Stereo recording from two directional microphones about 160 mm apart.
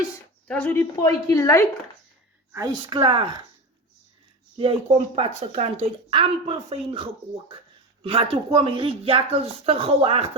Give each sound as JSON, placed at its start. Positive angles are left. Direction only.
{"t": 0.4, "sound": "a woman's voice", "side_deg": 10}
{"t": 2.5, "sound": "a woman's voice", "side_deg": -20}
{"t": 4.9, "sound": "speech", "side_deg": -40}